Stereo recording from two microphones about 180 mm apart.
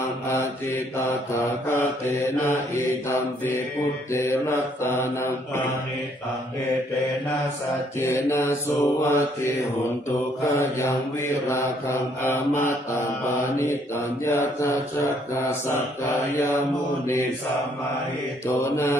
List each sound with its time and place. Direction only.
1.3 s mantra: 15° left (ahead or behind)
8.0 s mantra: 15° left (ahead or behind)
10.4 s mantra: 15° left (ahead or behind)
14.2 s mantra: 15° left (ahead or behind)
18.6 s mantra: 15° left (ahead or behind)